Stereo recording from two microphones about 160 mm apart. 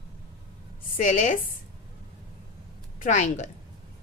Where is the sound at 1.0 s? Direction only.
50° left (ahead or behind).